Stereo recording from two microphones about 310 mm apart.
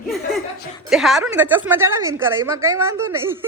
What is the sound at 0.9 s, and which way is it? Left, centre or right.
A man's voice, centre.